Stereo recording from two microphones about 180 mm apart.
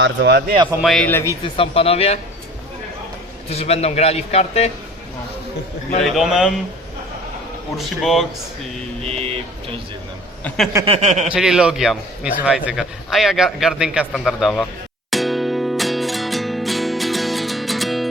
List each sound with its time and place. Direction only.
0.0 s speech: 65° right (ahead or behind)
0.8 s a man's voice: centre (ahead or behind)
1.5 s a man's voice: 30° left (ahead or behind)
3.5 s a man's voice: 35° left (ahead or behind)
6.0 s a man's voice: centre (ahead or behind)
7.8 s a man's voice: centre (ahead or behind)
9.0 s a sound: 35° right (ahead or behind)
10.8 s a sound: 35° right (ahead or behind)
11.3 s a man's voice: 5° right (ahead or behind)
15.1 s music: centre (ahead or behind)